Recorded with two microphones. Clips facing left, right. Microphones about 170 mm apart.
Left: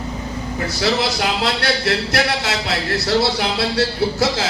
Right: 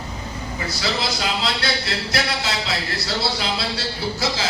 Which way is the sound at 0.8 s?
60° left (ahead or behind).